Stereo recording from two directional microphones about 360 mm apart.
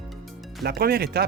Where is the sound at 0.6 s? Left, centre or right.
Right.